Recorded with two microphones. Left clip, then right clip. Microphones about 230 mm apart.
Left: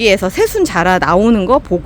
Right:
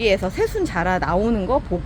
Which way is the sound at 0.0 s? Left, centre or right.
Left.